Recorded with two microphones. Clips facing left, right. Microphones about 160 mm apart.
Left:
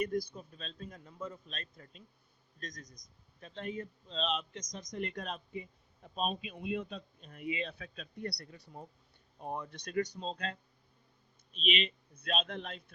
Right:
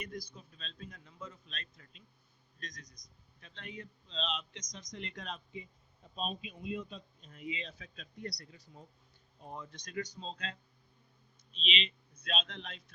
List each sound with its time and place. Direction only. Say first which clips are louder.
0.0 s a man's voice: left 10 dB; 55° left (ahead or behind)